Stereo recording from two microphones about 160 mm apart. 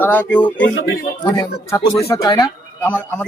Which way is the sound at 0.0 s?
10° left (ahead or behind).